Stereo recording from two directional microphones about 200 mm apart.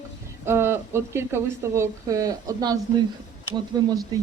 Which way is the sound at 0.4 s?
10° right (ahead or behind).